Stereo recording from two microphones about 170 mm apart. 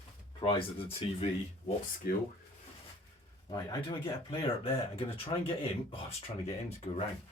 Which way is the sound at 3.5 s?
25° left (ahead or behind).